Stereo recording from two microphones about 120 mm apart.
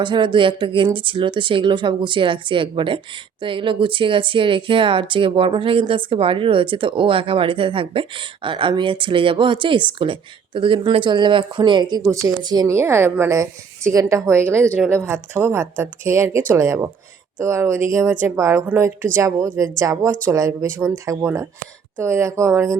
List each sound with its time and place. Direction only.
0.0 s speech: 40° right (ahead or behind)
12.0 s a woman's voice: 25° right (ahead or behind)
12.7 s a woman's voice: 20° right (ahead or behind)
18.3 s a woman's voice: 25° right (ahead or behind)